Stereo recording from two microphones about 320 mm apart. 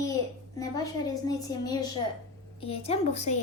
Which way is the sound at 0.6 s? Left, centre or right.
Centre.